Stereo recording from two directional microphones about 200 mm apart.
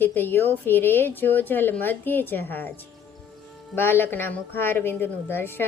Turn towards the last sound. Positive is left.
turn(degrees=10)  # may be behind; listen again after turning